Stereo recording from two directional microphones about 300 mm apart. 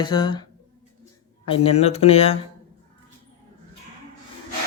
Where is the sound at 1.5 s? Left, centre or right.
Centre.